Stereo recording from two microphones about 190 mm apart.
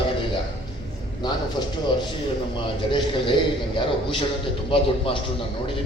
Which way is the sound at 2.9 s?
25° left (ahead or behind).